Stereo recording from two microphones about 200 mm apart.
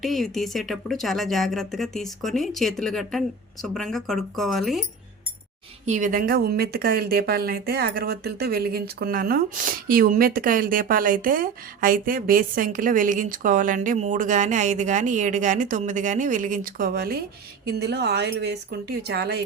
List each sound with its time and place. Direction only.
0.0 s speech: centre (ahead or behind)
5.8 s a woman's voice: 40° right (ahead or behind)